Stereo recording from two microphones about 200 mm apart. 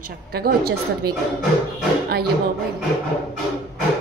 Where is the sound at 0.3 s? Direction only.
50° right (ahead or behind).